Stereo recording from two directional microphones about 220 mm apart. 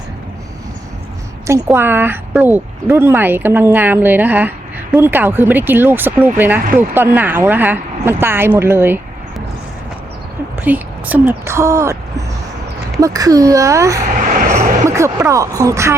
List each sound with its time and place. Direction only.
1.5 s speech: 10° right (ahead or behind)
10.6 s speech: 10° right (ahead or behind)
13.0 s speech: 15° right (ahead or behind)